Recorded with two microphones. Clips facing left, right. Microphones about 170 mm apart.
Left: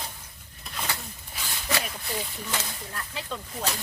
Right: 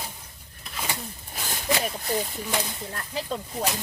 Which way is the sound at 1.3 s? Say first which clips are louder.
Right 4 dB; 45° right (ahead or behind).